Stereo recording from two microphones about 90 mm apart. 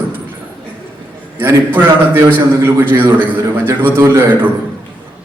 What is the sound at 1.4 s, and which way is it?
A man's voice, 25° right (ahead or behind).